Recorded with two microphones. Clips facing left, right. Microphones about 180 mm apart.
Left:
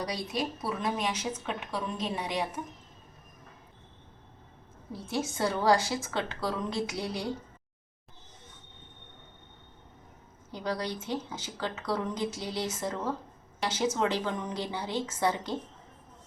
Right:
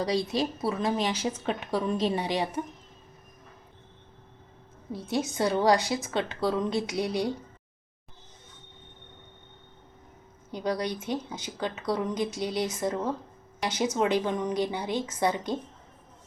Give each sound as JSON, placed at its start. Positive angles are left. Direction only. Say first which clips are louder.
{"t": 0.0, "sound": "a woman's voice", "louder": "right 6 dB", "side_deg": -25}
{"t": 4.9, "sound": "a woman's voice", "louder": "right 3 dB", "side_deg": -20}
{"t": 10.5, "sound": "a woman's voice", "louder": "right 4 dB", "side_deg": -20}